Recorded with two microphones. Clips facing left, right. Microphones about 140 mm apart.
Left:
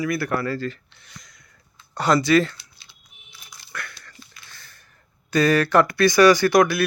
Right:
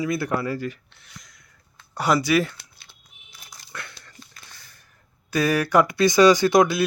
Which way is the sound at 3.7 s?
25° right (ahead or behind).